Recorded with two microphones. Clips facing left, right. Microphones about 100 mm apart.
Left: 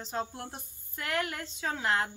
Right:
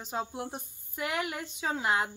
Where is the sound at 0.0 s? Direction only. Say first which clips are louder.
Right 1 dB; 10° right (ahead or behind).